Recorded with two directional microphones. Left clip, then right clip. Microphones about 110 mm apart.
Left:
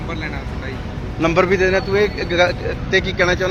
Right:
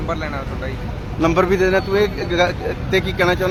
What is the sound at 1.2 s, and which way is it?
A man's voice, 30° right (ahead or behind).